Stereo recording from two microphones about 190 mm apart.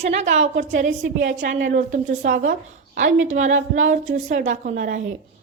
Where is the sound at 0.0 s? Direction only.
35° right (ahead or behind).